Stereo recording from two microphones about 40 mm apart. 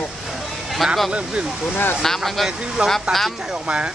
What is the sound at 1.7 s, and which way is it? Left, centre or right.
Speech, left.